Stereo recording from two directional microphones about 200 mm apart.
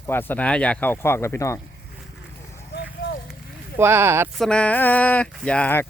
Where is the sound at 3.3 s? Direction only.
10° right (ahead or behind).